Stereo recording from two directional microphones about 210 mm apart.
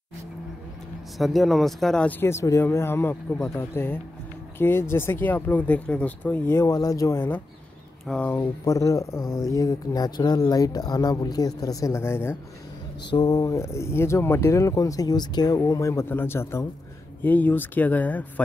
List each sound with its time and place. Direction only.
1.1 s speech: centre (ahead or behind)